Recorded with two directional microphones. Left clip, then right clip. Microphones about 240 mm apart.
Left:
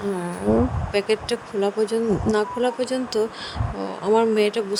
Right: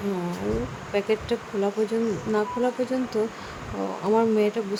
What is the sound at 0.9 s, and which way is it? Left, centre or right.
Speech, left.